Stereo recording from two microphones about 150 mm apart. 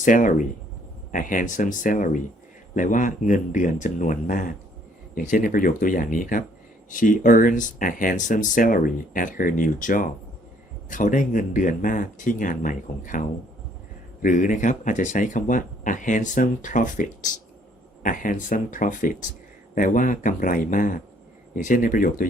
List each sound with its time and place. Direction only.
0.0 s speech: 60° left (ahead or behind)